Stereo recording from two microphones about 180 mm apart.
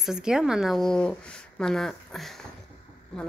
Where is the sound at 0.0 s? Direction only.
5° right (ahead or behind).